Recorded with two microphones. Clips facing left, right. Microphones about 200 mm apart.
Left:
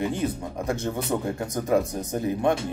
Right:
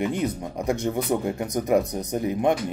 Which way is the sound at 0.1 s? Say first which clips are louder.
Right 1 dB; 15° right (ahead or behind).